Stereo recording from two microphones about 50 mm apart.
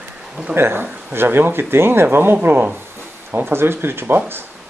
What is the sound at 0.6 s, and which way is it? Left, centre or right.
Speech, right.